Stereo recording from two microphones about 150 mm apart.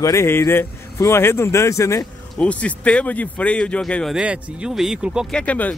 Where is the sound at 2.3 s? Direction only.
10° left (ahead or behind).